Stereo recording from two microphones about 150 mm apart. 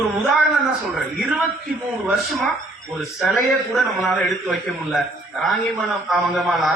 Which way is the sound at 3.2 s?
Centre (ahead or behind).